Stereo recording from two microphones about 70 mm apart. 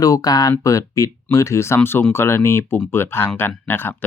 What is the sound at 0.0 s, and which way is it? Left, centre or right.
Speech, left.